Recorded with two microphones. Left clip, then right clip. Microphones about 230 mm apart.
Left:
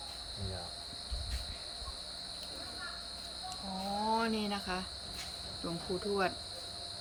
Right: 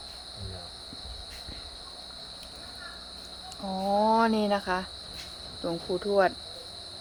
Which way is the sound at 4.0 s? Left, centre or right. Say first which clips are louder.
Right 9 dB; right.